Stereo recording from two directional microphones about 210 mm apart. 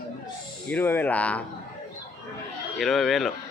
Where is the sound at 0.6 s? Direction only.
10° left (ahead or behind).